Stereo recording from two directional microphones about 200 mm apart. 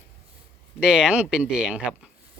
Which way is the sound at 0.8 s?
5° right (ahead or behind).